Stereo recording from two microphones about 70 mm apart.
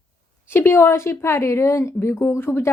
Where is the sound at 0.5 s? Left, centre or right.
Left.